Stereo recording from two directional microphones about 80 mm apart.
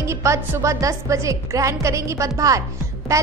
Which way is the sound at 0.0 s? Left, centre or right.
Right.